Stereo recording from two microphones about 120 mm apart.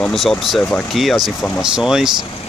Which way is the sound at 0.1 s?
Centre (ahead or behind).